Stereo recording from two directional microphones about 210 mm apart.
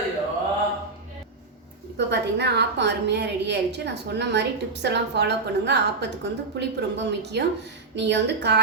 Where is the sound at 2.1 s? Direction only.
55° right (ahead or behind).